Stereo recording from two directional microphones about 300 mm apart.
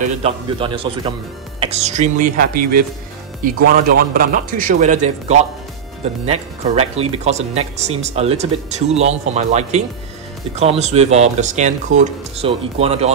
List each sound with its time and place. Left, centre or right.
0.0 s a man's voice: centre